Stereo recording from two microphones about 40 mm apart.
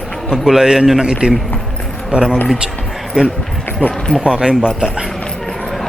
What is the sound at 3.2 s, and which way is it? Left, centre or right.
Speech, centre.